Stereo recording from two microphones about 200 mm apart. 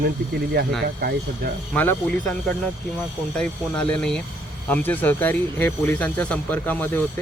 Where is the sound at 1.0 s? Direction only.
50° right (ahead or behind).